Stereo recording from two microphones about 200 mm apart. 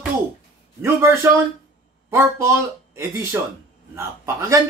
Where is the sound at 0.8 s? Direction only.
15° right (ahead or behind).